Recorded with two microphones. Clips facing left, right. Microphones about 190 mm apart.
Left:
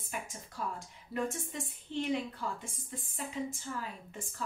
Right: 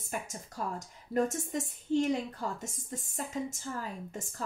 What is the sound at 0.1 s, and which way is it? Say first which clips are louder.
A woman's voice: right 4 dB; 45° right (ahead or behind).